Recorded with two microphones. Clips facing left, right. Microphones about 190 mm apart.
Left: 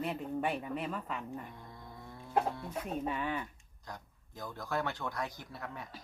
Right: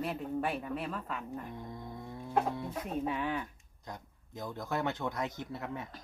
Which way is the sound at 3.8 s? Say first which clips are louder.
Right 2 dB; 20° right (ahead or behind).